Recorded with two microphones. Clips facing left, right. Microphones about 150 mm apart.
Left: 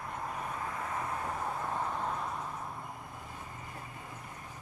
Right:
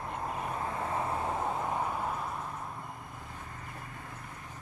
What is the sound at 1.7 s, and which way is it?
Vehicle, 10° right (ahead or behind).